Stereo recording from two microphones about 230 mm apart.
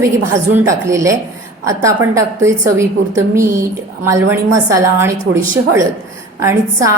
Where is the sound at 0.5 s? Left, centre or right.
Centre.